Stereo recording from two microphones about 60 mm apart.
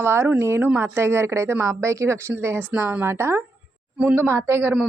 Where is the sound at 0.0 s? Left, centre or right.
Right.